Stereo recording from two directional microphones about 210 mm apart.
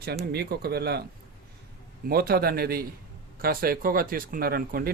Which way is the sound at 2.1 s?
45° right (ahead or behind).